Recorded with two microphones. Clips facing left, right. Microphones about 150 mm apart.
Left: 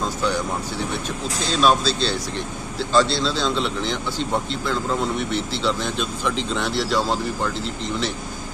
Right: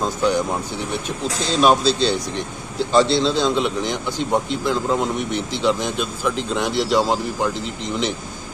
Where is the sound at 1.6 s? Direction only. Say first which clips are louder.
Right 3 dB; 20° right (ahead or behind).